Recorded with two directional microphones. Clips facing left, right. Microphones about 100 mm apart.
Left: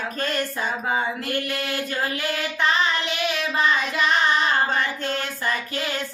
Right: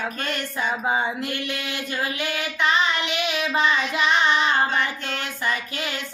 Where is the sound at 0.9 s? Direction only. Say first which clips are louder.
Even; 20° right (ahead or behind).